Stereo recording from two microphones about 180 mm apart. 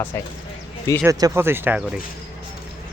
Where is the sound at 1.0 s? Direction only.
20° right (ahead or behind).